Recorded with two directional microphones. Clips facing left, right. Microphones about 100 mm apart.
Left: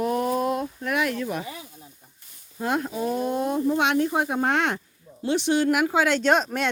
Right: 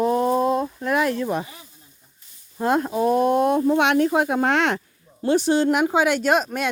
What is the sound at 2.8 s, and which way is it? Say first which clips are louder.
Speech: right 7 dB; 55° right (ahead or behind).